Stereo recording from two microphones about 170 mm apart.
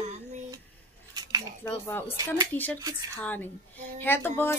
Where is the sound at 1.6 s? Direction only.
15° left (ahead or behind).